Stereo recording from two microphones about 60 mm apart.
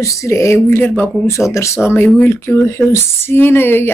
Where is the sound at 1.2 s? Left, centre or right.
Left.